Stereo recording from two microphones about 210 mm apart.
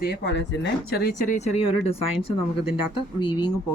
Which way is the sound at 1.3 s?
30° left (ahead or behind).